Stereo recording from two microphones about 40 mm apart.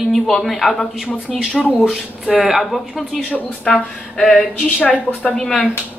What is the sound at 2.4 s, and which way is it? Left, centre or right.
Speech, centre.